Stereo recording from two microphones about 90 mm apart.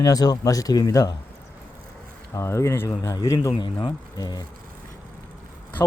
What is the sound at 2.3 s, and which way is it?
Speech, 30° left (ahead or behind).